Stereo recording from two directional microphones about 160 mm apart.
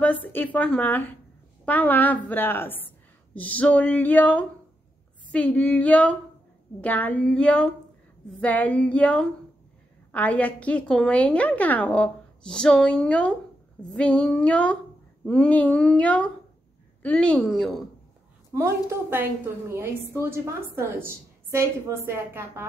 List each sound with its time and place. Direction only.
0.0 s a woman's voice: 10° left (ahead or behind)
18.5 s a woman's voice: 20° right (ahead or behind)